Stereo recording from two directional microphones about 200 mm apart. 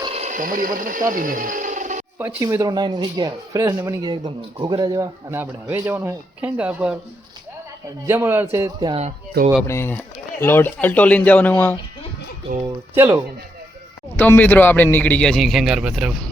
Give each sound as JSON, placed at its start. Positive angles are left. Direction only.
{"t": 0.0, "sound": "a sound", "side_deg": -30}
{"t": 2.1, "sound": "speech", "side_deg": -15}
{"t": 8.0, "sound": "speech", "side_deg": -10}
{"t": 9.6, "sound": "a man's voice", "side_deg": 10}
{"t": 12.9, "sound": "speech", "side_deg": -10}
{"t": 14.2, "sound": "a man's voice", "side_deg": 10}